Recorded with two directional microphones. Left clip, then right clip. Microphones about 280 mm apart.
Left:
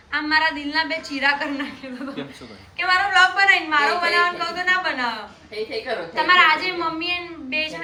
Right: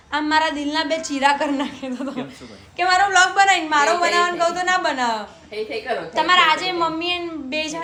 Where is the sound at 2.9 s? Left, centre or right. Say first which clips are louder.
Right 1 dB; right.